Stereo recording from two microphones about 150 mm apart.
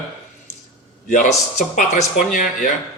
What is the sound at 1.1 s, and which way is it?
Speech, 55° left (ahead or behind).